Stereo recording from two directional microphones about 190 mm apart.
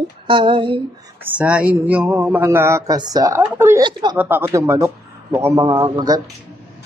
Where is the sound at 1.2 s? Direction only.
5° right (ahead or behind); by 4.2 s 20° right (ahead or behind).